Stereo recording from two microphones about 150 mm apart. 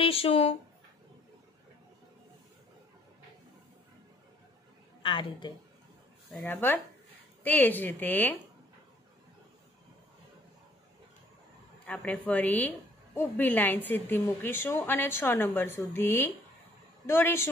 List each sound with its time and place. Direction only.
0.0 s speech: 40° left (ahead or behind)
5.0 s speech: 35° left (ahead or behind)
6.4 s a woman's voice: 15° left (ahead or behind)
11.8 s a woman's voice: 5° left (ahead or behind)